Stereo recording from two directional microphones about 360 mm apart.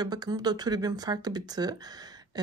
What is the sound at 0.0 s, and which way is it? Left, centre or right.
Speech, centre.